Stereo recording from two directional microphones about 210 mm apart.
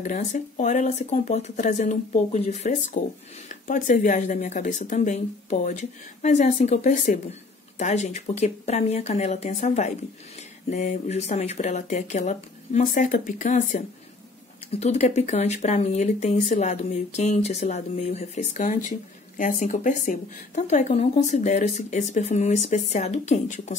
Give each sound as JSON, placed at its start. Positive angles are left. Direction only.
{"t": 0.0, "sound": "speech", "side_deg": 35}